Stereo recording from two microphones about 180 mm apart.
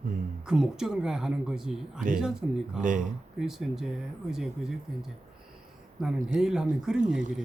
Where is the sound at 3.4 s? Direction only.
Centre (ahead or behind).